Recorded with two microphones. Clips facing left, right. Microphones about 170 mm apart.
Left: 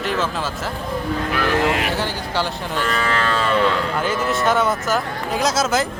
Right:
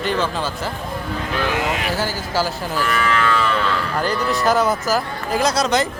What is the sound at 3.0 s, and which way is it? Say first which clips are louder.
Moo: right 2 dB; 35° left (ahead or behind).